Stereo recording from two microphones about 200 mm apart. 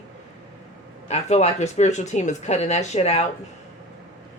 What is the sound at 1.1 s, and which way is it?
Speech, 35° left (ahead or behind).